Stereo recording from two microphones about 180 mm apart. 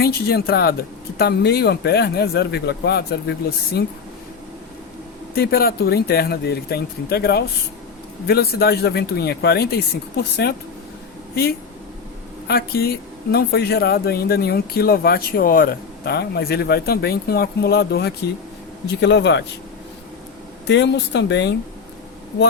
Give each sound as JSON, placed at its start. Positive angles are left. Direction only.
{"t": 0.0, "sound": "speech", "side_deg": 60}
{"t": 5.3, "sound": "speech", "side_deg": 55}
{"t": 12.5, "sound": "speech", "side_deg": 60}
{"t": 18.9, "sound": "speech", "side_deg": 75}
{"t": 20.7, "sound": "speech", "side_deg": 75}